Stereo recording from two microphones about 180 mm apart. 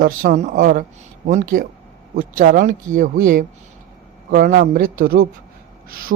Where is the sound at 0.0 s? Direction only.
50° right (ahead or behind).